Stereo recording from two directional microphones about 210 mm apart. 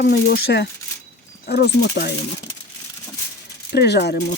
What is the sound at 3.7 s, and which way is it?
Speech, 50° left (ahead or behind).